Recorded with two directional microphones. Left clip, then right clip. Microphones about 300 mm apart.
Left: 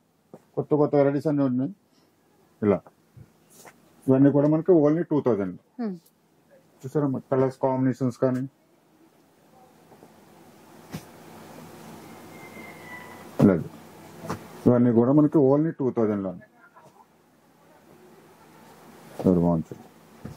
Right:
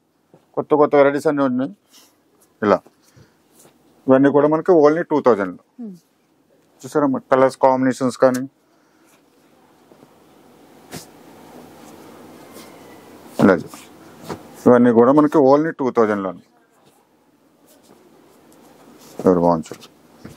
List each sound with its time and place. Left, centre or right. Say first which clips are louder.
0.6 s speech: right 8 dB; centre
4.1 s speech: right 7 dB; centre
6.9 s speech: right 9 dB; centre
14.6 s speech: right 9 dB; centre
19.2 s speech: right 9 dB; centre